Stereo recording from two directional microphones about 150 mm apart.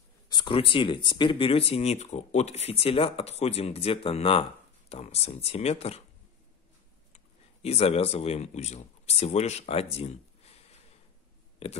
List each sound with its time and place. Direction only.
0.3 s speech: 30° left (ahead or behind)
7.6 s speech: 45° left (ahead or behind)